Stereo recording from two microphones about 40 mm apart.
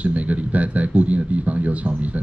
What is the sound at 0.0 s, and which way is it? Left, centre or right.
Speech, right.